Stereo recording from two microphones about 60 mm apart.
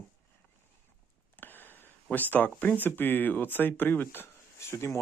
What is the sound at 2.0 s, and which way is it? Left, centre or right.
Speech, left.